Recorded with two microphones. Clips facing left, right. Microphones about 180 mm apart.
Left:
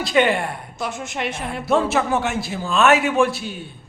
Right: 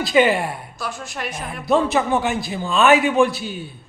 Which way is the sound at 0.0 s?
Centre (ahead or behind).